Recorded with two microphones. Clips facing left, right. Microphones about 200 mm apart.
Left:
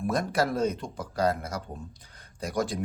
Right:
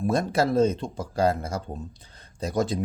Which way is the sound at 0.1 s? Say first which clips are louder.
Right 4 dB; 25° right (ahead or behind).